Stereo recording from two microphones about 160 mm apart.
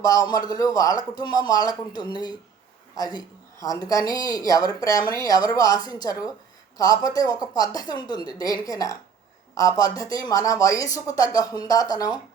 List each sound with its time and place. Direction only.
0.0 s a woman's voice: 25° left (ahead or behind)